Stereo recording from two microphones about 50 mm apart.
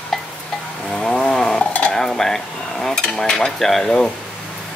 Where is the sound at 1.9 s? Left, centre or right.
Centre.